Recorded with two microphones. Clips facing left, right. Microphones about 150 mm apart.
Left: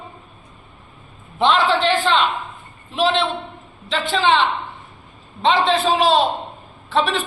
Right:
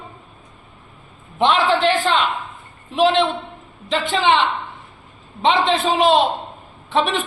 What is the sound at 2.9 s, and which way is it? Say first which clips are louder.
Speech: right 3 dB; 15° right (ahead or behind).